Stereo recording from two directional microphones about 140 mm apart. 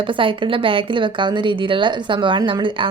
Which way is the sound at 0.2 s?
40° right (ahead or behind).